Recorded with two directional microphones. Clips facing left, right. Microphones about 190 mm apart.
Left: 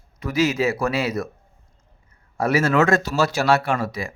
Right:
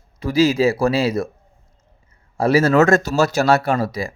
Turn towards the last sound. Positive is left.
turn(degrees=-35)  # may be behind; listen again after turning